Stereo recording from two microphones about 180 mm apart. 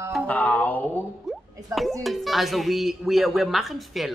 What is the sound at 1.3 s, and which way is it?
Drip, centre (ahead or behind).